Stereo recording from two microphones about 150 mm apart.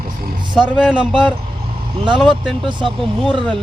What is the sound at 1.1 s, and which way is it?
Vehicle, 30° right (ahead or behind).